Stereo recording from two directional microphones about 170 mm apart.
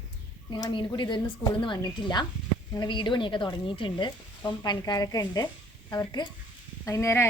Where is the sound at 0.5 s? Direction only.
25° left (ahead or behind).